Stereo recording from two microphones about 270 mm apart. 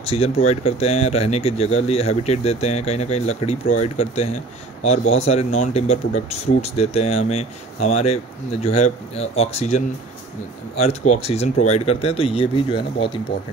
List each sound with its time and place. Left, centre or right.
0.0 s speech: left